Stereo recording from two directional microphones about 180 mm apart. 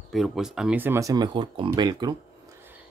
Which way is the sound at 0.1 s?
Centre (ahead or behind).